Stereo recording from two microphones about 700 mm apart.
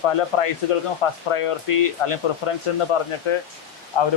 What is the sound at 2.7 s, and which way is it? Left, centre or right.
Speech, left.